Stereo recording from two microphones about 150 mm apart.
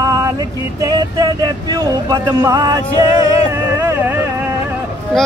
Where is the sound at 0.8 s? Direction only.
25° right (ahead or behind).